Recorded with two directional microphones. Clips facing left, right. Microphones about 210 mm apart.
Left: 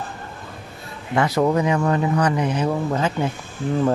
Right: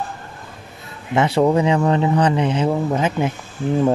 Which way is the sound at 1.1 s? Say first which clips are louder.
Right 3 dB; 25° right (ahead or behind).